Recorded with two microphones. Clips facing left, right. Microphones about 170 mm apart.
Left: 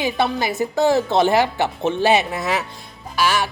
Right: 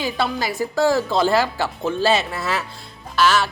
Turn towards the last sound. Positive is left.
turn(degrees=15)  # may be behind; listen again after turning